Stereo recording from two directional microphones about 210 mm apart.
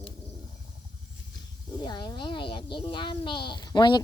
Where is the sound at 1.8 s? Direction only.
20° left (ahead or behind).